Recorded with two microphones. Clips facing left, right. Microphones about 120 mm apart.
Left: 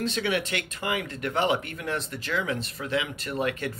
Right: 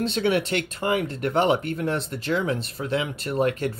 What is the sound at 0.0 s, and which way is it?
Speech, 30° right (ahead or behind).